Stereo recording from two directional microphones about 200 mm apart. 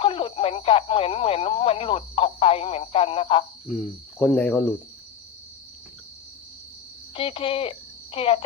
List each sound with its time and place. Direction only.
0.0 s speech: 25° left (ahead or behind)
3.7 s speech: centre (ahead or behind)
7.1 s speech: 25° left (ahead or behind)